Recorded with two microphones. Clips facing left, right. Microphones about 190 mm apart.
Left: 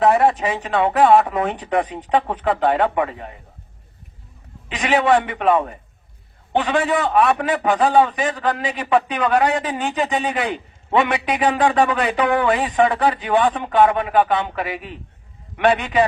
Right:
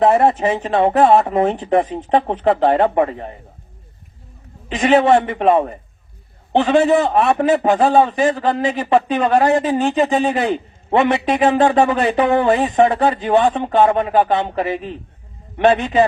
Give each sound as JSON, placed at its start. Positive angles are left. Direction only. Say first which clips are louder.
{"t": 0.0, "sound": "a man's voice", "louder": "right 2 dB", "side_deg": -25}
{"t": 5.0, "sound": "a man's voice", "louder": "right 3 dB", "side_deg": -25}